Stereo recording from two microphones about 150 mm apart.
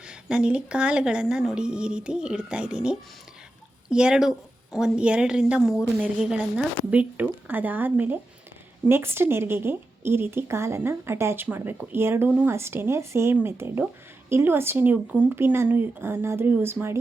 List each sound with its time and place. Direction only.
0.0 s a woman's voice: 5° right (ahead or behind)